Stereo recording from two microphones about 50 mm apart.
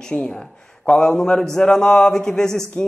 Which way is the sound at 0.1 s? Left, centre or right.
Left.